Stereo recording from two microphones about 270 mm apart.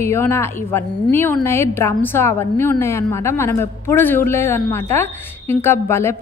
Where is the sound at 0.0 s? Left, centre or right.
Centre.